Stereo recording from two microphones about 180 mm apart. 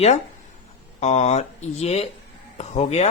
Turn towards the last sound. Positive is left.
turn(degrees=35)  # may be behind; listen again after turning